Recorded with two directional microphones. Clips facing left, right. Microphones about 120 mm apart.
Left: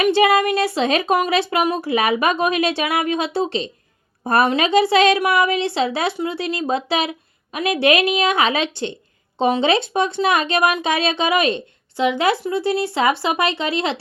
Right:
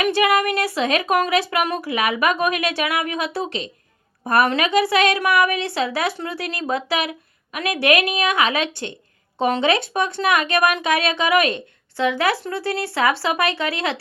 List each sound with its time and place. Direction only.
0.0 s speech: 25° left (ahead or behind)